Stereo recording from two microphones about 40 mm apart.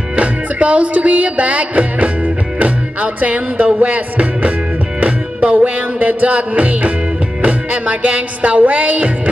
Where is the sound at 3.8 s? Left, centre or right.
Right.